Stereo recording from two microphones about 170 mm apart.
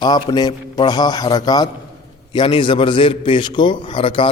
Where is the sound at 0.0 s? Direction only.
25° left (ahead or behind).